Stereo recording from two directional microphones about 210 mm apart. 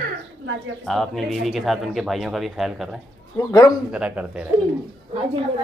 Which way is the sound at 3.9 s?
5° right (ahead or behind).